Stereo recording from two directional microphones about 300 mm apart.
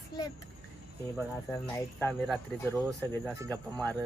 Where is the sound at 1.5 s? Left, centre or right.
Centre.